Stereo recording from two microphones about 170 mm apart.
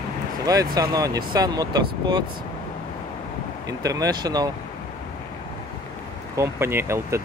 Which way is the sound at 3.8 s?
20° right (ahead or behind).